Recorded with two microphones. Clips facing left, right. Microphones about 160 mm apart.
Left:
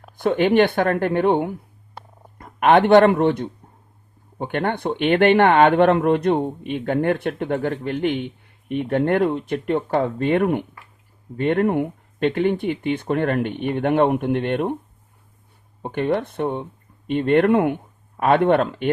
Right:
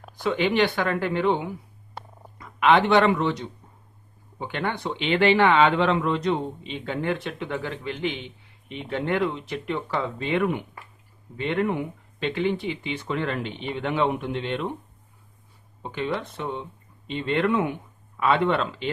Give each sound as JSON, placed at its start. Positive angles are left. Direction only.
{"t": 0.2, "sound": "speech", "side_deg": 50}
{"t": 15.8, "sound": "speech", "side_deg": 55}